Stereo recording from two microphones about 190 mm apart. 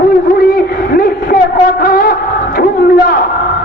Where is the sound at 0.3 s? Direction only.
55° left (ahead or behind).